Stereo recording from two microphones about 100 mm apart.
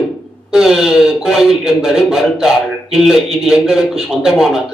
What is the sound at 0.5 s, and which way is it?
Speech, 5° right (ahead or behind).